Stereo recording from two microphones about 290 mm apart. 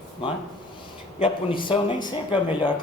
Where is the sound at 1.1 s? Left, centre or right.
Centre.